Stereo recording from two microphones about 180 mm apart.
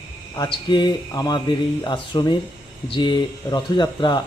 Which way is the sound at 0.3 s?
25° left (ahead or behind).